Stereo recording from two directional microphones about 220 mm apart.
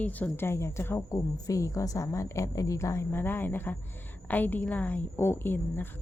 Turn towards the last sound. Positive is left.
turn(degrees=10)  # may be behind; listen again after turning